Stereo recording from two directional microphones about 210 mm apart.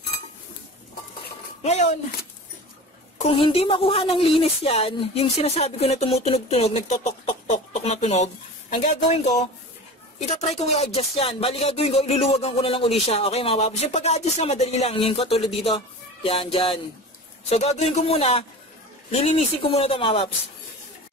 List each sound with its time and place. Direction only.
1.6 s speech: 30° left (ahead or behind)
3.2 s speech: 25° left (ahead or behind)